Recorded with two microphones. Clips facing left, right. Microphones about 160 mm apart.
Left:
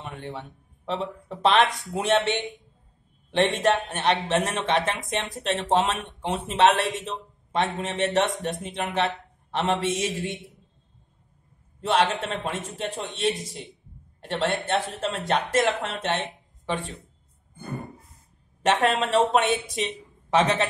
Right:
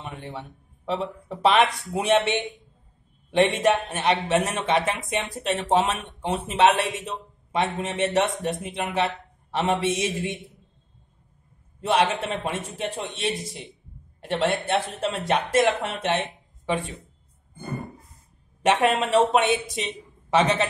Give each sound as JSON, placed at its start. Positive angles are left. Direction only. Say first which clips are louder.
{"t": 0.0, "sound": "a man's voice", "louder": "even", "side_deg": 0}
{"t": 3.4, "sound": "speech", "louder": "right 1 dB", "side_deg": 0}
{"t": 9.8, "sound": "speech", "louder": "right 2 dB", "side_deg": -20}
{"t": 12.1, "sound": "speech", "louder": "right 1 dB", "side_deg": 0}
{"t": 18.6, "sound": "a man's voice", "louder": "right 1 dB", "side_deg": -10}